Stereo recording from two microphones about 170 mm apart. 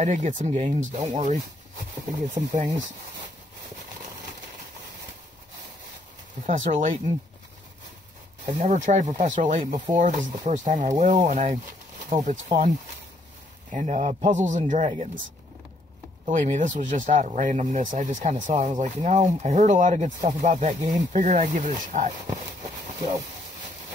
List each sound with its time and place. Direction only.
0.0 s speech: 45° right (ahead or behind)
6.4 s speech: 50° right (ahead or behind)
8.6 s speech: 45° right (ahead or behind)
16.3 s speech: 45° right (ahead or behind)